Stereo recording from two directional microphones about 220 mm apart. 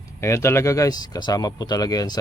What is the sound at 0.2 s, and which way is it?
Speech, 10° left (ahead or behind).